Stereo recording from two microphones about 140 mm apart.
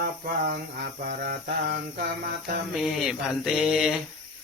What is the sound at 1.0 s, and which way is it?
Mantra, 90° right.